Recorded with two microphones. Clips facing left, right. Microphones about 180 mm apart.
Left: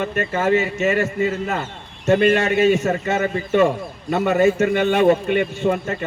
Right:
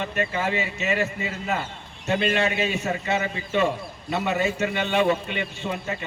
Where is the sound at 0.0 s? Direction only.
45° left (ahead or behind).